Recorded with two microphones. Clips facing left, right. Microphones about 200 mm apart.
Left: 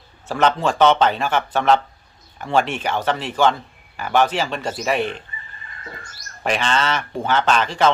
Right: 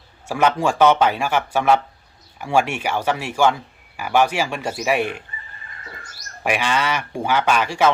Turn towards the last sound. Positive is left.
turn(degrees=-10)  # may be behind; listen again after turning